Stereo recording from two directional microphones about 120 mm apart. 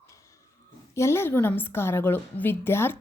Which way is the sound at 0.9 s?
20° left (ahead or behind).